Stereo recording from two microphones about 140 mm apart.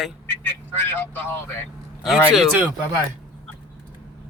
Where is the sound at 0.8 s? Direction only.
15° left (ahead or behind).